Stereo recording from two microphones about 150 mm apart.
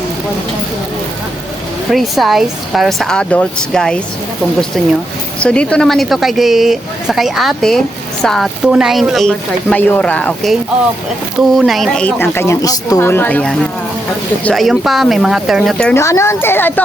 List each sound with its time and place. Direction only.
1.9 s speech: centre (ahead or behind)
5.4 s speech: 5° left (ahead or behind)
16.0 s speech: 20° left (ahead or behind)